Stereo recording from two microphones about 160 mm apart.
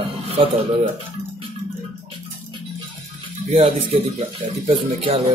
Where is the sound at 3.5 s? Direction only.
35° right (ahead or behind).